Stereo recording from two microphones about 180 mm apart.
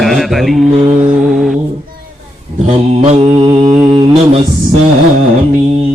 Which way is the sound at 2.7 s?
35° right (ahead or behind).